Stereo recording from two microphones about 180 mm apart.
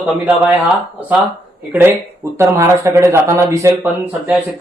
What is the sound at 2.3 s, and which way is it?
Speech, 15° right (ahead or behind).